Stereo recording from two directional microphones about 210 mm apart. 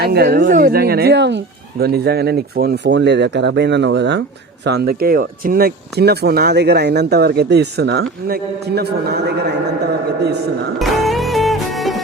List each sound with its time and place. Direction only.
0.0 s speech: 50° right (ahead or behind)
10.8 s music: centre (ahead or behind)